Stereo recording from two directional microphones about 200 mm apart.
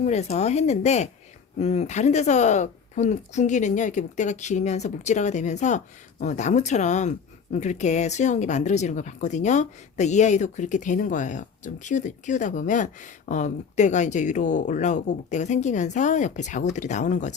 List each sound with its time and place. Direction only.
0.0 s speech: 35° left (ahead or behind)